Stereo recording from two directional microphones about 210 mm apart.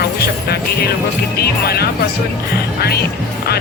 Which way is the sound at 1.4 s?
50° left (ahead or behind).